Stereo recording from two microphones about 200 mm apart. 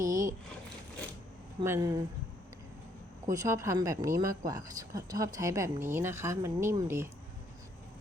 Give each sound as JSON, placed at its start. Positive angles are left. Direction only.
{"t": 0.0, "sound": "a sound", "side_deg": -15}
{"t": 1.6, "sound": "speech", "side_deg": -15}
{"t": 3.3, "sound": "speech", "side_deg": -15}